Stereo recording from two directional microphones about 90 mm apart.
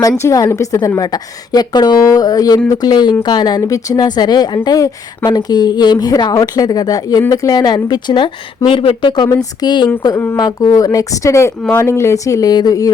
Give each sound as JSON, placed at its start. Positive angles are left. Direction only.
{"t": 0.2, "sound": "speech", "side_deg": 35}
{"t": 9.0, "sound": "speech", "side_deg": 50}
{"t": 10.3, "sound": "a woman's voice", "side_deg": 45}